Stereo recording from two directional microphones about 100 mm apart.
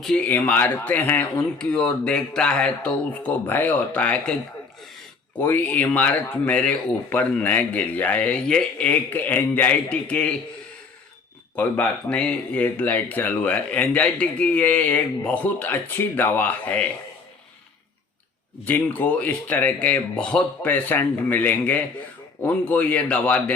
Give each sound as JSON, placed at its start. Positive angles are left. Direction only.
{"t": 0.3, "sound": "speech", "side_deg": 20}
{"t": 1.5, "sound": "speech", "side_deg": 10}
{"t": 5.4, "sound": "speech", "side_deg": 20}
{"t": 11.5, "sound": "speech", "side_deg": 15}
{"t": 18.6, "sound": "speech", "side_deg": 15}